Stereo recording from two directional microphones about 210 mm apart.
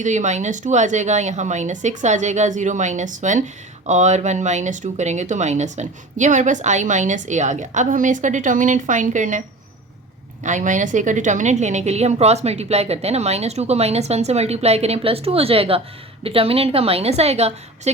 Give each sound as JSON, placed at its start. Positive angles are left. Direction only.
{"t": 0.0, "sound": "a woman's voice", "side_deg": -35}
{"t": 10.4, "sound": "a woman's voice", "side_deg": -35}